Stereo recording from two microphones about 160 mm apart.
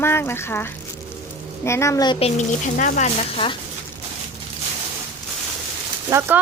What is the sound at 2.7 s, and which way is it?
Speech, 50° left (ahead or behind).